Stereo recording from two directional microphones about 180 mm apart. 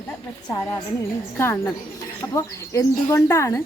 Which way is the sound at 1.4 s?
15° left (ahead or behind).